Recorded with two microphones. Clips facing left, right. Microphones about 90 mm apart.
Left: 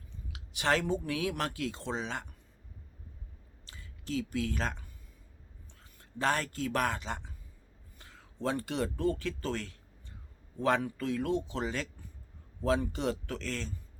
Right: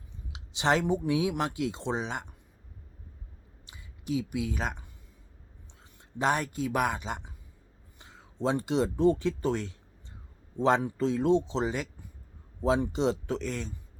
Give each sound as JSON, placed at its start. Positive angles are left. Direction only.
{"t": 0.3, "sound": "speech", "side_deg": -20}
{"t": 3.7, "sound": "speech", "side_deg": -15}
{"t": 6.0, "sound": "speech", "side_deg": -15}